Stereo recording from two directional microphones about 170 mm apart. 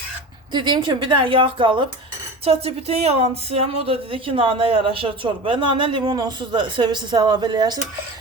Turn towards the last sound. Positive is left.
turn(degrees=-25)  # may be behind; listen again after turning